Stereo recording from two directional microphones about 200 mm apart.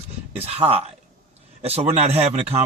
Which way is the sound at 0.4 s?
30° right (ahead or behind).